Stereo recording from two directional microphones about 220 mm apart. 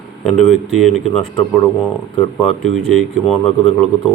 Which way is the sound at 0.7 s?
Centre (ahead or behind).